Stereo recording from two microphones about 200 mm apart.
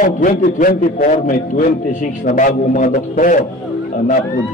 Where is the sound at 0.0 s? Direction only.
40° left (ahead or behind).